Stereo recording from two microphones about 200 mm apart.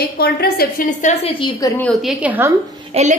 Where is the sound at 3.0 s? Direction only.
30° right (ahead or behind).